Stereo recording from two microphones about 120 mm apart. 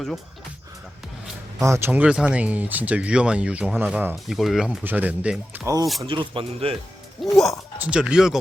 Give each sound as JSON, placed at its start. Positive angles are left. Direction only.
{"t": 1.5, "sound": "speech", "side_deg": -25}
{"t": 4.8, "sound": "speech", "side_deg": -15}
{"t": 6.1, "sound": "speech", "side_deg": -45}
{"t": 7.2, "sound": "speech", "side_deg": 0}